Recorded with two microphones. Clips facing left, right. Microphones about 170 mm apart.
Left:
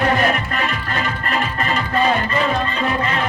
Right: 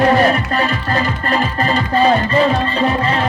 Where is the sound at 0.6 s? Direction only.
35° right (ahead or behind).